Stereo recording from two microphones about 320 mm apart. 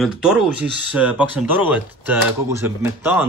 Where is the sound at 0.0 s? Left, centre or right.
Centre.